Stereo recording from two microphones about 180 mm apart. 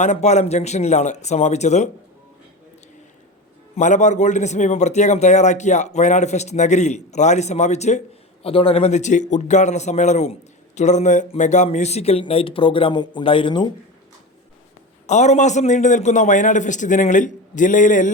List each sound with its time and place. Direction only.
0.0 s a man's voice: 40° left (ahead or behind)
3.8 s a man's voice: 40° left (ahead or behind); by 13.7 s 25° left (ahead or behind)
15.0 s a man's voice: 40° left (ahead or behind)